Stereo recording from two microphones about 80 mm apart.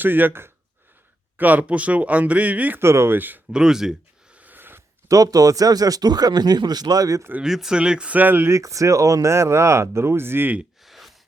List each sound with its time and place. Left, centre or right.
0.0 s speech: right
2.8 s speech: right
3.5 s speech: centre
4.4 s a sound: right
5.0 s speech: right
7.4 s speech: centre; by 8.5 s right
8.5 s speech: right
10.8 s a sound: centre